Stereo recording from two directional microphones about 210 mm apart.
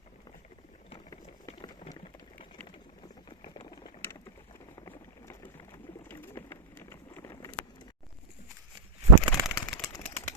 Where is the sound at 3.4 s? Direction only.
20° left (ahead or behind).